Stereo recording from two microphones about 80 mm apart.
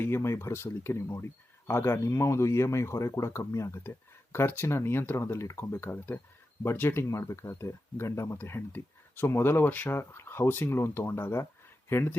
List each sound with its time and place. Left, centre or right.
0.0 s speech: left